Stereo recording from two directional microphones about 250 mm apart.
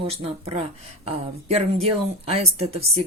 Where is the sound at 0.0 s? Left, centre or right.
Right.